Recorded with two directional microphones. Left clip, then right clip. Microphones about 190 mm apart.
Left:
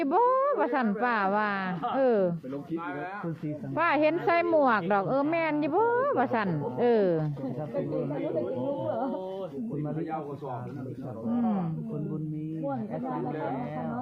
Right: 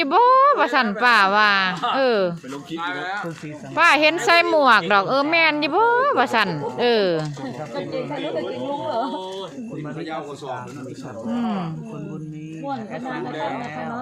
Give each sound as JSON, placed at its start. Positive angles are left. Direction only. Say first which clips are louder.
{"t": 0.0, "sound": "a woman's voice", "louder": "right 10 dB", "side_deg": -10}
{"t": 11.3, "sound": "a woman's voice", "louder": "right 4 dB", "side_deg": -10}